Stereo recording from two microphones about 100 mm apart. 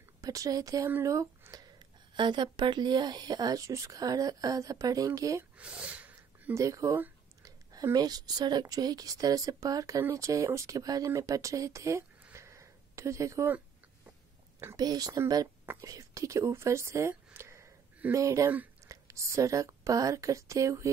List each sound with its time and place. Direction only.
0.2 s speech: 35° right (ahead or behind)
2.1 s speech: 50° right (ahead or behind); by 5.4 s 35° right (ahead or behind)
5.6 s snort: 10° right (ahead or behind)
6.5 s a woman's voice: 30° right (ahead or behind)
14.8 s a woman's voice: 40° right (ahead or behind)